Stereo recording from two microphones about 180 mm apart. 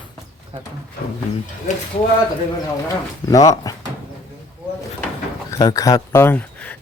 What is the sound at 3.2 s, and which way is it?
Speech, 20° left (ahead or behind).